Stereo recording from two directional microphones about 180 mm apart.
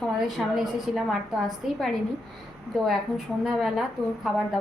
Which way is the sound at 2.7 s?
Centre (ahead or behind).